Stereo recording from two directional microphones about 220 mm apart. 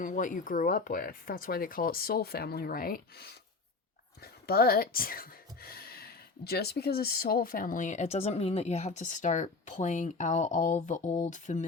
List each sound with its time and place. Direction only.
0.0 s speech: 35° left (ahead or behind)